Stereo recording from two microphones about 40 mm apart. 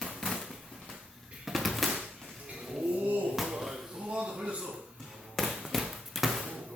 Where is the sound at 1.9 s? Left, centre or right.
Right.